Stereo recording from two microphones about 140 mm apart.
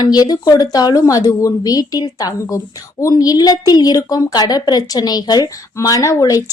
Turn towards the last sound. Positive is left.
turn(degrees=25)  # may be behind; listen again after turning